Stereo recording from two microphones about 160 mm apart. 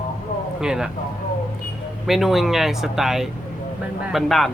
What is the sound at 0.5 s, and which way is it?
Speech, 5° right (ahead or behind).